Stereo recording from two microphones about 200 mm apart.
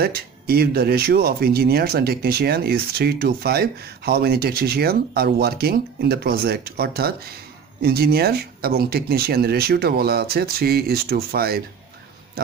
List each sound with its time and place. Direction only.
0.0 s speech: 50° right (ahead or behind)